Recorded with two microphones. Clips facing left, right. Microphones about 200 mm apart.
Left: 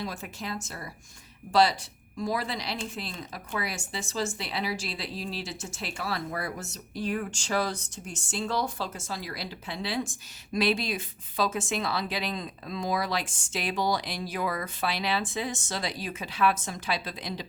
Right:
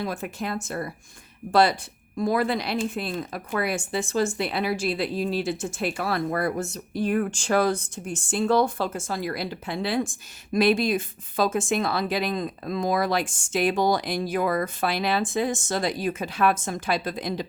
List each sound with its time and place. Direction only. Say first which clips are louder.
0.0 s speech: right 6 dB; 55° right (ahead or behind)